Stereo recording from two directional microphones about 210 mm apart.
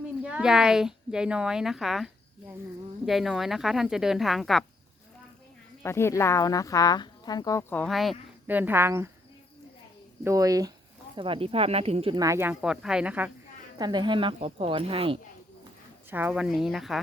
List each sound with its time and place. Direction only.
0.2 s a woman's voice: 5° right (ahead or behind)
3.1 s a woman's voice: centre (ahead or behind)
5.8 s speech: 10° left (ahead or behind); by 9.0 s 10° right (ahead or behind)
10.2 s speech: 15° right (ahead or behind)
13.7 s speech: 20° right (ahead or behind)
16.0 s a woman's voice: 10° right (ahead or behind)